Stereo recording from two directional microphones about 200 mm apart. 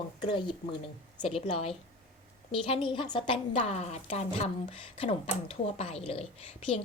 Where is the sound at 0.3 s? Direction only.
25° left (ahead or behind).